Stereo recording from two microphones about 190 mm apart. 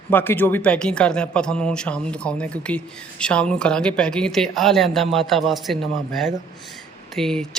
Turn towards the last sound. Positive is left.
turn(degrees=0)  # may be behind; listen again after turning